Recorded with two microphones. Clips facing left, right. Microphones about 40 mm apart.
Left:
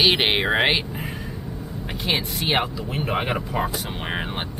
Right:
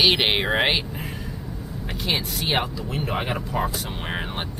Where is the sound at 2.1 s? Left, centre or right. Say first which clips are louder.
Left 2 dB; centre.